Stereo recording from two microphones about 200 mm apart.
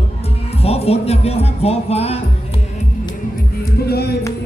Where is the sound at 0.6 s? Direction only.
30° left (ahead or behind).